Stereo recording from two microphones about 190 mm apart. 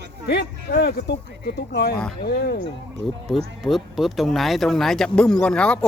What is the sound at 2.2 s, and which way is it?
Speech, 55° left (ahead or behind).